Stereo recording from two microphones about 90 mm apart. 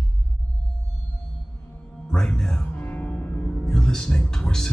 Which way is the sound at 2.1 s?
5° left (ahead or behind).